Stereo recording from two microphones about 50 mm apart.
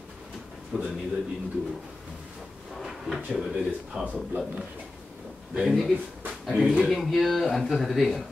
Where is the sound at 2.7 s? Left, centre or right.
Centre.